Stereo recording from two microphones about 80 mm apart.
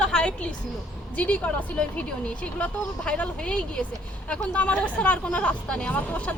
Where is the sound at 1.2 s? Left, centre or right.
Centre.